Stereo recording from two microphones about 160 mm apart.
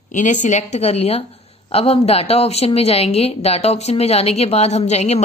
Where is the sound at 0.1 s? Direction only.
50° left (ahead or behind).